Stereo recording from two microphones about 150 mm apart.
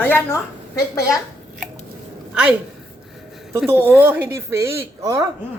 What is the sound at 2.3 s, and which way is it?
Speech, 5° right (ahead or behind).